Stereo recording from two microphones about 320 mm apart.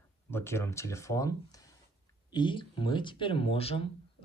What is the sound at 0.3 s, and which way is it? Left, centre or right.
Speech, centre.